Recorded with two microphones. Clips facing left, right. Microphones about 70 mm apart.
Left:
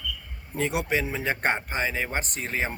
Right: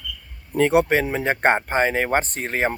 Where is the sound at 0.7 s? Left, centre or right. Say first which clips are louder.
Right 8 dB; right.